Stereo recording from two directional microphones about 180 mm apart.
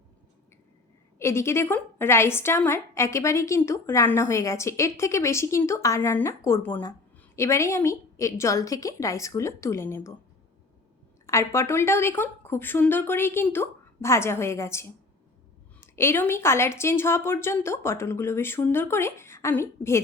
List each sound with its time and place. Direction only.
1.2 s a woman's voice: 15° left (ahead or behind)
11.3 s a woman's voice: 15° left (ahead or behind)